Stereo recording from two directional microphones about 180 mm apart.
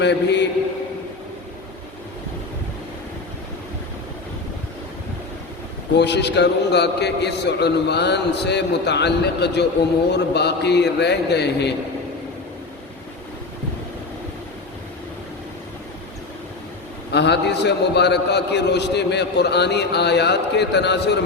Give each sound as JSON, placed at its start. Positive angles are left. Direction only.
{"t": 0.0, "sound": "a man's voice", "side_deg": 70}
{"t": 6.0, "sound": "a man's voice", "side_deg": 70}
{"t": 17.1, "sound": "a man's voice", "side_deg": 70}